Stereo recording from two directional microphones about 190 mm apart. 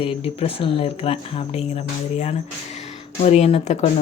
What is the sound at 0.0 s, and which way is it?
Speech, 30° left (ahead or behind).